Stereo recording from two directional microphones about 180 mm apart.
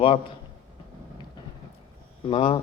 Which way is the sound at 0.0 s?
30° left (ahead or behind).